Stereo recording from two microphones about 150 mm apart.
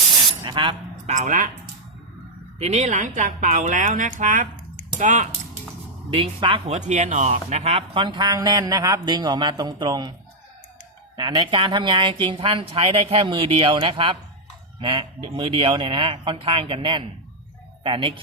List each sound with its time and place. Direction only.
0.4 s speech: 35° right (ahead or behind)
1.0 s speech: 50° right (ahead or behind)
2.6 s speech: 45° right (ahead or behind)
6.1 s speech: 40° right (ahead or behind)
6.7 s speech: 50° right (ahead or behind); by 10.1 s 25° right (ahead or behind)
11.2 s speech: 35° right (ahead or behind)